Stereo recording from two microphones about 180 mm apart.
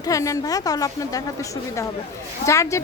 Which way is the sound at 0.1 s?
20° left (ahead or behind).